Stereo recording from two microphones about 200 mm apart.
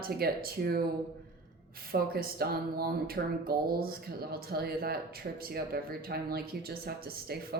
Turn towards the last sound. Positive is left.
turn(degrees=-50)  # may be behind; listen again after turning